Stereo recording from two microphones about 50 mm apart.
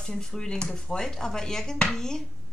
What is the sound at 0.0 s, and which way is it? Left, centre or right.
Speech, centre.